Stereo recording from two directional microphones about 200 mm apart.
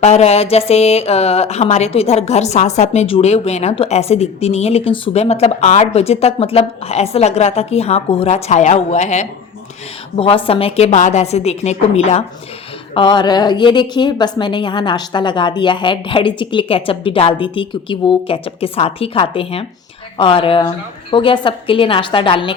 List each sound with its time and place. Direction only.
0.0 s a woman's voice: 35° left (ahead or behind)